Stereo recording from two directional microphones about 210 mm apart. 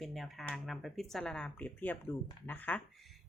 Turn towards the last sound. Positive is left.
turn(degrees=5)  # may be behind; listen again after turning